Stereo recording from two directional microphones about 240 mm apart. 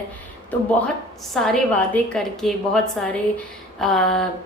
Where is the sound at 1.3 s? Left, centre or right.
Centre.